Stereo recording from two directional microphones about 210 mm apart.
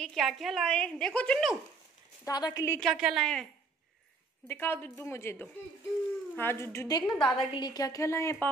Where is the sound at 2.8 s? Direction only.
Centre (ahead or behind).